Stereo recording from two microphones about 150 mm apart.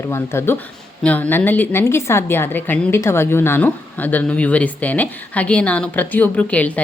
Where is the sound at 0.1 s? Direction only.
15° left (ahead or behind).